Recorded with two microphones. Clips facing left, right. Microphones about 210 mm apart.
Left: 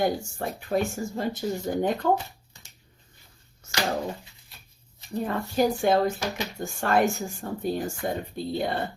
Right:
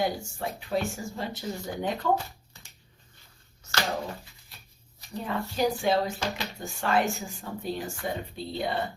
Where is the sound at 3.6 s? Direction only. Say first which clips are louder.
Right 1 dB; 50° left (ahead or behind).